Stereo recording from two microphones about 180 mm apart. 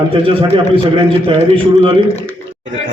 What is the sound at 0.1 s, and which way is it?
A man's voice, 30° right (ahead or behind).